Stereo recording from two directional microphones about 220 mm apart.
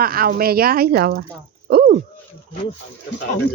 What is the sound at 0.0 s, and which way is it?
Speech, 40° right (ahead or behind).